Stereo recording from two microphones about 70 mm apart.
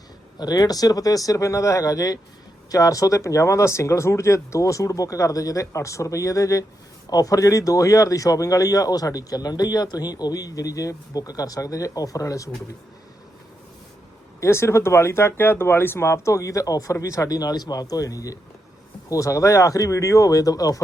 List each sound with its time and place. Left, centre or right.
0.3 s speech: left
14.4 s speech: left